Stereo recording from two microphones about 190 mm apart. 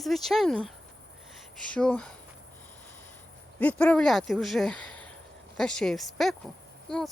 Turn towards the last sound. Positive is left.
turn(degrees=5)  # may be behind; listen again after turning